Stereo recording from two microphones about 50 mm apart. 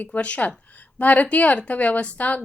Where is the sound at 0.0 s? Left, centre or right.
Left.